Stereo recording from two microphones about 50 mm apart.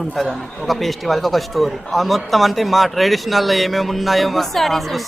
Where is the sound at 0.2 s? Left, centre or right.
Centre.